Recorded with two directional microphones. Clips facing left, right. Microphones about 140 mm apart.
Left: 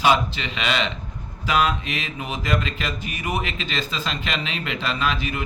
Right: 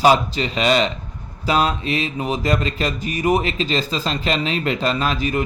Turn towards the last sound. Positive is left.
turn(degrees=-40)  # may be behind; listen again after turning